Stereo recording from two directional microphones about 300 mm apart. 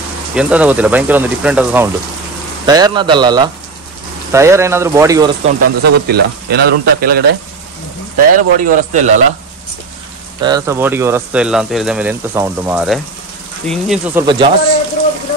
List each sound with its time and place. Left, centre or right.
0.3 s speech: centre
5.4 s speech: right
8.4 s a man's voice: right
10.4 s speech: centre
14.2 s speech: centre